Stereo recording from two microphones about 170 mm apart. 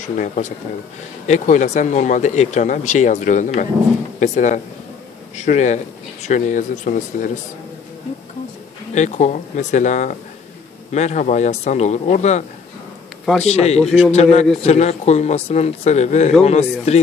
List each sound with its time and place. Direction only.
0.0 s speech: 45° left (ahead or behind)
8.9 s speech: 45° left (ahead or behind)